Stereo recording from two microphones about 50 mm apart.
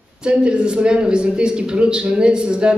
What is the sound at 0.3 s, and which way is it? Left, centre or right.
A man's voice, right.